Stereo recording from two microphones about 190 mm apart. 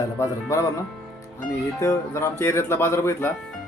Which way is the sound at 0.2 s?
15° left (ahead or behind).